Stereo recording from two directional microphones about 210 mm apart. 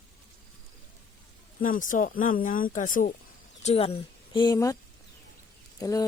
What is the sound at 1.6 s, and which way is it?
Speech, 40° left (ahead or behind).